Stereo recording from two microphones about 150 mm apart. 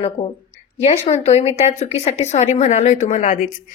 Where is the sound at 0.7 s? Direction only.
45° left (ahead or behind).